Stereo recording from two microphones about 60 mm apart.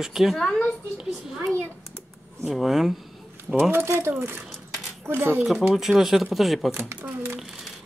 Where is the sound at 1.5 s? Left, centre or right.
Right.